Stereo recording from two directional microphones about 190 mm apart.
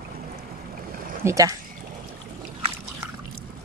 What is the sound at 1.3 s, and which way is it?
Speech, 15° right (ahead or behind).